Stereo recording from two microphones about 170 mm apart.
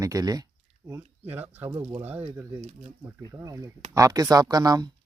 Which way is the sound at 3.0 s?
15° right (ahead or behind).